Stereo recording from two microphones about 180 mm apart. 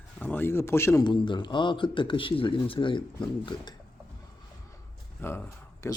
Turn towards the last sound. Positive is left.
turn(degrees=15)  # may be behind; listen again after turning